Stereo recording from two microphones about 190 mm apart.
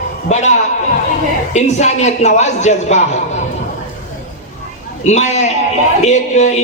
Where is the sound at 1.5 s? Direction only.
35° left (ahead or behind).